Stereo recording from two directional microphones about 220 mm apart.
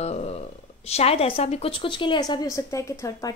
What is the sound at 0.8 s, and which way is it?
Speech, 30° left (ahead or behind).